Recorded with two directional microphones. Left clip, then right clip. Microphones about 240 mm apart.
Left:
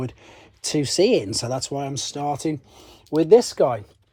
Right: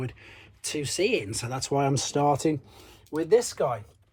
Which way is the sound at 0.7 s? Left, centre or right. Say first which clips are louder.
Left 7 dB; left.